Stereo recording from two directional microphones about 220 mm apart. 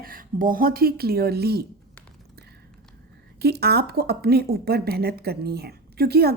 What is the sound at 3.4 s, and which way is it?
A woman's voice, 45° right (ahead or behind).